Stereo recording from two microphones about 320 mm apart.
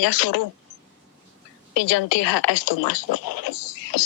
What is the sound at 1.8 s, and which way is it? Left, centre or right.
Speech, left.